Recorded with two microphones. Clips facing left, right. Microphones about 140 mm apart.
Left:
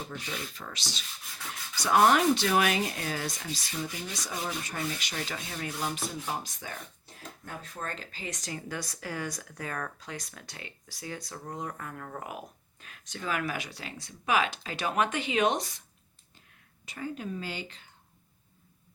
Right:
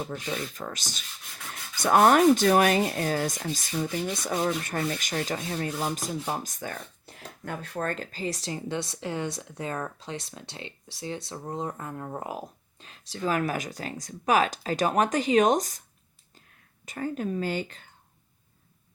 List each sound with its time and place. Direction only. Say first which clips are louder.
0.1 s speech: right 6 dB; 45° right (ahead or behind)
7.2 s speech: right 6 dB; 75° right (ahead or behind); by 8.0 s 55° right (ahead or behind)
8.1 s speech: right 6 dB; 35° right (ahead or behind)
16.8 s speech: right 6 dB; 45° right (ahead or behind)